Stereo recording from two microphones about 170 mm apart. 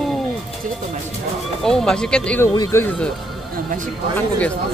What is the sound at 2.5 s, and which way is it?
Speech, 20° left (ahead or behind).